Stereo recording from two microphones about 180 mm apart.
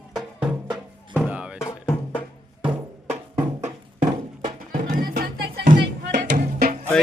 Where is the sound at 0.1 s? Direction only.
5° right (ahead or behind).